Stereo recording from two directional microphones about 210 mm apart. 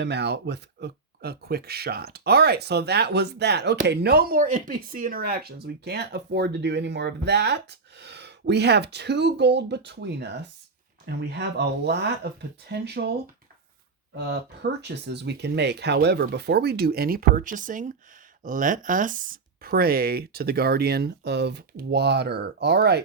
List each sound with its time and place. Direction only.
0.0 s speech: 55° right (ahead or behind)
14.8 s speech: 55° right (ahead or behind)